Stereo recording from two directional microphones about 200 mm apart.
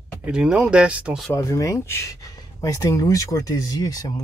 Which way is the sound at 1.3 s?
15° left (ahead or behind).